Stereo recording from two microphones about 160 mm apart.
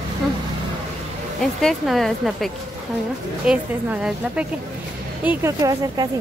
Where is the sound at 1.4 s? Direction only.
5° left (ahead or behind).